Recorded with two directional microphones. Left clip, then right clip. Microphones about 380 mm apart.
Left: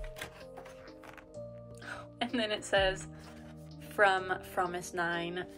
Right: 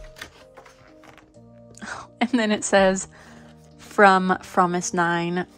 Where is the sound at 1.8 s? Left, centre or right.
Centre.